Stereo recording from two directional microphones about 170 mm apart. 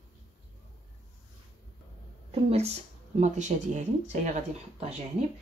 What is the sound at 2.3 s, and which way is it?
Speech, 35° right (ahead or behind).